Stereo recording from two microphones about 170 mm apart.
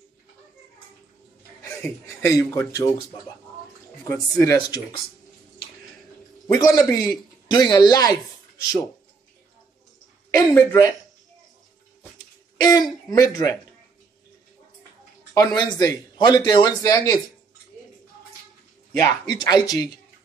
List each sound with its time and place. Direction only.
1.6 s a man's voice: 15° left (ahead or behind)
4.1 s a man's voice: 15° left (ahead or behind)
6.6 s a man's voice: 20° left (ahead or behind)
10.3 s a man's voice: 15° left (ahead or behind)
12.6 s a man's voice: 25° left (ahead or behind)
15.3 s a man's voice: 25° left (ahead or behind)
18.9 s a man's voice: 20° left (ahead or behind)